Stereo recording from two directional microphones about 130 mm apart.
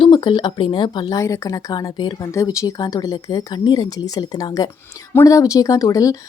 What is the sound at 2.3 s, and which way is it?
A woman's voice, 25° left (ahead or behind).